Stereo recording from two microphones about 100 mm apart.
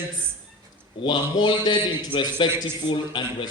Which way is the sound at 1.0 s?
50° left (ahead or behind).